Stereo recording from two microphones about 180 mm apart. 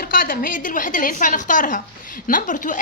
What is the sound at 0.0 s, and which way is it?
A woman's voice, 50° left (ahead or behind).